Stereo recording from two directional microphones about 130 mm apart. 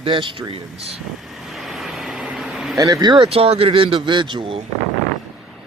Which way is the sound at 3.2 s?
50° right (ahead or behind).